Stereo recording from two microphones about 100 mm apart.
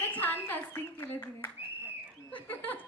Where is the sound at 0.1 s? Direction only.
15° left (ahead or behind).